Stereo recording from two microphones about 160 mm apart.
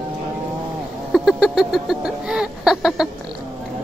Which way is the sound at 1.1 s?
Centre (ahead or behind).